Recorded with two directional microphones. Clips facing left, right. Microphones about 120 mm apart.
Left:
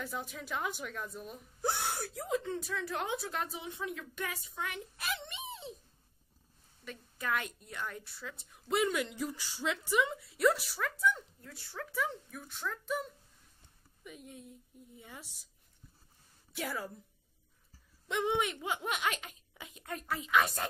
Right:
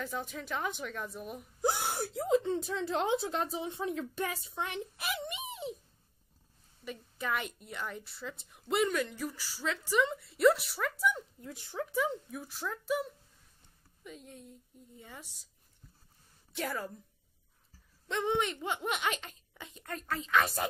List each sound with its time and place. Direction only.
0.0 s speech: 5° left (ahead or behind); by 5.0 s 25° right (ahead or behind)
5.0 s speech: 15° right (ahead or behind)
6.8 s a woman's voice: 5° right (ahead or behind)
8.9 s a woman's voice: 15° left (ahead or behind); by 13.1 s 5° right (ahead or behind)
14.0 s speech: 10° left (ahead or behind)
16.5 s speech: 10° left (ahead or behind)
18.0 s speech: 10° left (ahead or behind)